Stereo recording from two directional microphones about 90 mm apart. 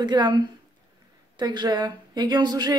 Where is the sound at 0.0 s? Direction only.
55° right (ahead or behind).